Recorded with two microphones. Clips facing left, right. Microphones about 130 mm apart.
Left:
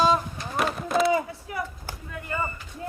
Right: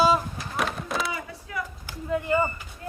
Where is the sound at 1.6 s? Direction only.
30° left (ahead or behind).